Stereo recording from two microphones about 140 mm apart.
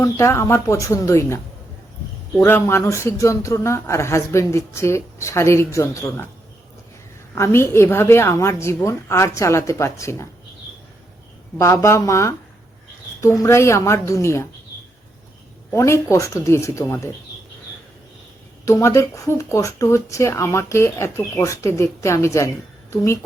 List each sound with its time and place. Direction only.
0.0 s speech: 20° left (ahead or behind)
2.4 s speech: 20° left (ahead or behind)
7.3 s speech: 20° left (ahead or behind)
11.5 s speech: 20° left (ahead or behind)
15.7 s speech: 20° left (ahead or behind)
18.6 s speech: 20° left (ahead or behind)